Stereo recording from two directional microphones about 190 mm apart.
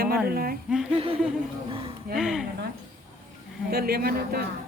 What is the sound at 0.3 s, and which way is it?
Speech, 50° right (ahead or behind).